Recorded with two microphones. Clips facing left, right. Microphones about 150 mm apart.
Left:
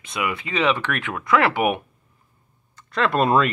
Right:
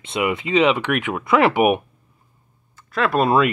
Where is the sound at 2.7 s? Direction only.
5° right (ahead or behind).